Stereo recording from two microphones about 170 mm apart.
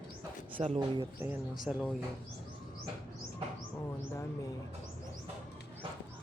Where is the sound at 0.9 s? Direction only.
15° right (ahead or behind).